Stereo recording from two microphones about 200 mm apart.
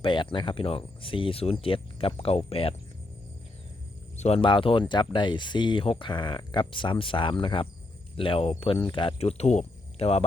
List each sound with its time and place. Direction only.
0.0 s speech: 25° left (ahead or behind)
4.2 s speech: 30° left (ahead or behind)